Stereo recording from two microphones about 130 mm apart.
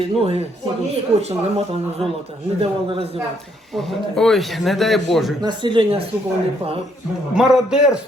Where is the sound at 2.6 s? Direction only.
50° right (ahead or behind).